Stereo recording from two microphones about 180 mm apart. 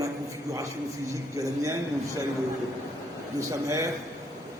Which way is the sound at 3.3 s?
15° right (ahead or behind).